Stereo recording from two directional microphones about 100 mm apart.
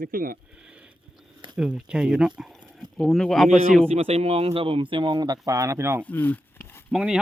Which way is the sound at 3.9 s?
85° right.